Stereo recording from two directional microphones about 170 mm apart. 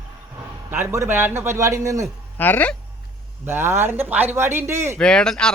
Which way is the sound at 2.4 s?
10° left (ahead or behind).